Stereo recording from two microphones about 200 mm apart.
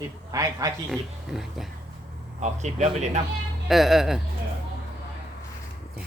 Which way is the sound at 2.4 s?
35° right (ahead or behind).